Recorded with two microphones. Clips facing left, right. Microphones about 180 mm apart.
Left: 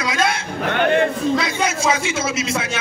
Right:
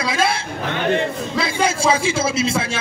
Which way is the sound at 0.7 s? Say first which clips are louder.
Left 3 dB; 55° left (ahead or behind).